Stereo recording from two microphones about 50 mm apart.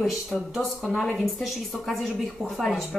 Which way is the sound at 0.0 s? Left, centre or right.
Centre.